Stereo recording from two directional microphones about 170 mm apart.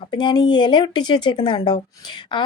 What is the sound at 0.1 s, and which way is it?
A woman's voice, 25° left (ahead or behind).